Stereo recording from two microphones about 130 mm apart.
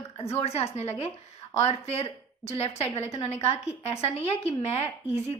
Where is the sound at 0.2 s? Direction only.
50° left (ahead or behind).